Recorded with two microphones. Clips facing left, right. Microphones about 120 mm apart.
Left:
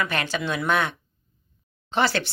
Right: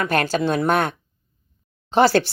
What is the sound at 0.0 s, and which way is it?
Speech, 45° right (ahead or behind).